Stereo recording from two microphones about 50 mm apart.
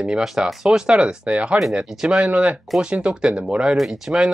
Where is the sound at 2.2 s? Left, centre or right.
Right.